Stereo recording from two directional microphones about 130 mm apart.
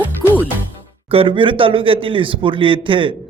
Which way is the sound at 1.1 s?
45° right (ahead or behind).